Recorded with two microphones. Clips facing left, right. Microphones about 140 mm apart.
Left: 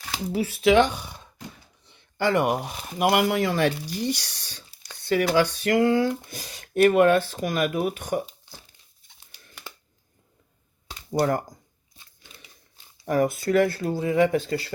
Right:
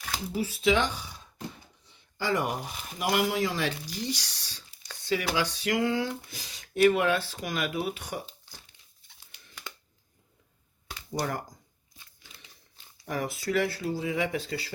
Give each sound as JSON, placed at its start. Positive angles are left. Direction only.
{"t": 0.3, "sound": "speech", "side_deg": 65}
{"t": 1.9, "sound": "a sound", "side_deg": 65}
{"t": 3.0, "sound": "speech", "side_deg": 60}
{"t": 11.1, "sound": "speech", "side_deg": 50}
{"t": 13.1, "sound": "speech", "side_deg": 50}